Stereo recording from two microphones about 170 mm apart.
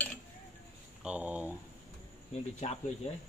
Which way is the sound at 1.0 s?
10° right (ahead or behind).